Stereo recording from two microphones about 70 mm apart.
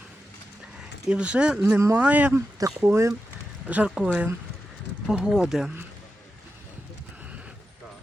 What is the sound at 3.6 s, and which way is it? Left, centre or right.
Speech, right.